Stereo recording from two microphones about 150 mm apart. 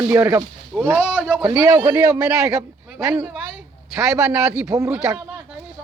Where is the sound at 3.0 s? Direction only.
10° right (ahead or behind).